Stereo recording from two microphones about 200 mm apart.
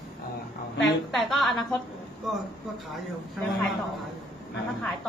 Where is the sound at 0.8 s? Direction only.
Centre (ahead or behind).